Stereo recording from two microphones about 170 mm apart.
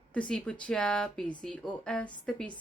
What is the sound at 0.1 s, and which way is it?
Speech, 5° left (ahead or behind).